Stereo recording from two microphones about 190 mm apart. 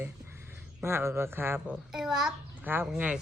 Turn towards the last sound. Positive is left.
turn(degrees=-5)  # may be behind; listen again after turning